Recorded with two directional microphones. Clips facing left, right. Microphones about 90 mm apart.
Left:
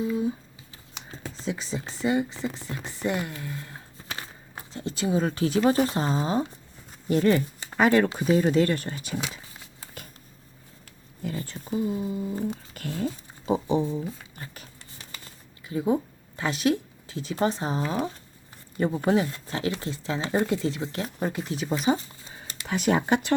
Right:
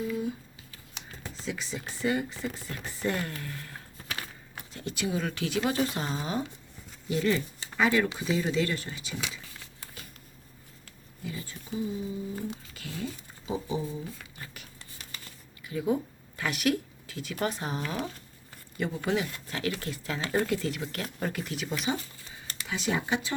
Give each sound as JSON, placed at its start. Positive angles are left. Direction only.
{"t": 0.0, "sound": "speech", "side_deg": 25}
{"t": 11.2, "sound": "speech", "side_deg": 50}
{"t": 14.3, "sound": "a sound", "side_deg": 35}
{"t": 18.8, "sound": "speech", "side_deg": 35}
{"t": 22.6, "sound": "speech", "side_deg": 55}